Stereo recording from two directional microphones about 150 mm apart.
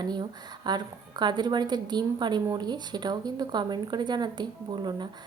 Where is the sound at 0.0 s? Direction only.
30° right (ahead or behind).